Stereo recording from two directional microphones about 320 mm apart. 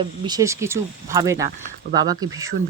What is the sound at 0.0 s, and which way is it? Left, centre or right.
Speech, centre.